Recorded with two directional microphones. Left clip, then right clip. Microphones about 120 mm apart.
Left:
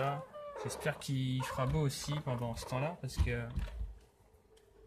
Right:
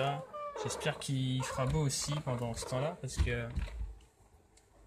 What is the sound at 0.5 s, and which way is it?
Speech, 10° left (ahead or behind).